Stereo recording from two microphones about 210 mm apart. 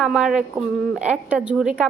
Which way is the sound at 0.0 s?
5° right (ahead or behind).